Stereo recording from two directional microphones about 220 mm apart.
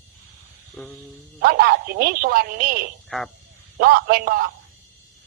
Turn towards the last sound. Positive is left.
turn(degrees=-45)  # may be behind; listen again after turning